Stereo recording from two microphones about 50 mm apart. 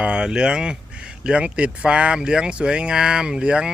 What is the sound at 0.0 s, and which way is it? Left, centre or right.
Speech, centre.